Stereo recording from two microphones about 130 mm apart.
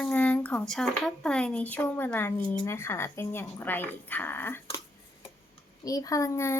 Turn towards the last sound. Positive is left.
turn(degrees=20)  # may be behind; listen again after turning